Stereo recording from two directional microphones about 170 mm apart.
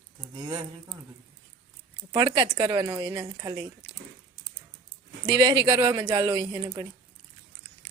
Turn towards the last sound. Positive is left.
turn(degrees=-25)  # may be behind; listen again after turning